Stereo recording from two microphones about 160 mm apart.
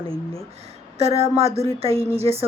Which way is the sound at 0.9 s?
40° right (ahead or behind).